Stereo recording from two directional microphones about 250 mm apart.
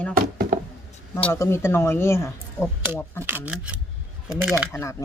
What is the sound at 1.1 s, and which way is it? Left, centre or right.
Speech, centre.